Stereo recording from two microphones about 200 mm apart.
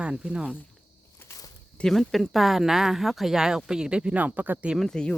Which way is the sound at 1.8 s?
Centre (ahead or behind).